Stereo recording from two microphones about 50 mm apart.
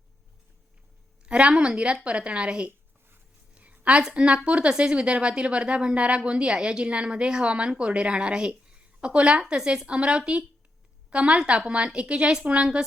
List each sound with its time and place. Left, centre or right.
1.2 s a woman's voice: right
3.5 s a sound: right
4.1 s a woman's voice: right